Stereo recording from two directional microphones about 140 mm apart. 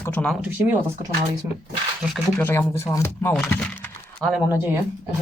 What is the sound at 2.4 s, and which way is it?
Speech, 15° left (ahead or behind).